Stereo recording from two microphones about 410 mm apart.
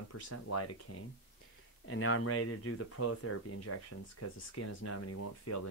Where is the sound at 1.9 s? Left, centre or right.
Left.